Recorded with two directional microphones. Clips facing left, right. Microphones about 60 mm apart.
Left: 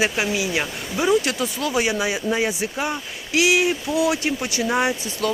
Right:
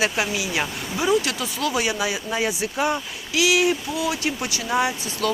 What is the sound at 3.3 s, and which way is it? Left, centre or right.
Speech, left.